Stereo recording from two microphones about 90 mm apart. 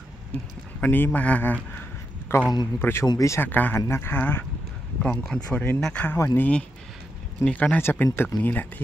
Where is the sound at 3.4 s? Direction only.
20° left (ahead or behind).